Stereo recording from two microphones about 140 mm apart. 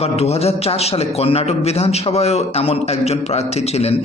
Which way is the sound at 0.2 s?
45° left (ahead or behind).